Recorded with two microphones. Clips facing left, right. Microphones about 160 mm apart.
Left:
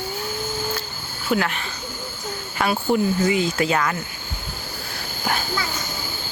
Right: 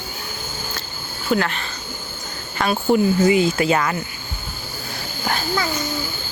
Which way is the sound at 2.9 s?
5° right (ahead or behind).